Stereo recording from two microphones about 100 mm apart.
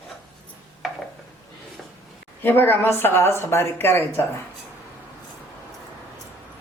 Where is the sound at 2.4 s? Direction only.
20° left (ahead or behind).